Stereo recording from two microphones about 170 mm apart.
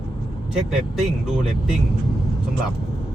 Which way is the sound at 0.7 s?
5° right (ahead or behind).